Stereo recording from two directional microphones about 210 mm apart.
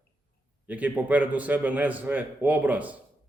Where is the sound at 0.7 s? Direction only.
5° right (ahead or behind).